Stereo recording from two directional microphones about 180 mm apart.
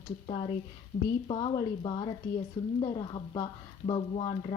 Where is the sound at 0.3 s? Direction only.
30° left (ahead or behind).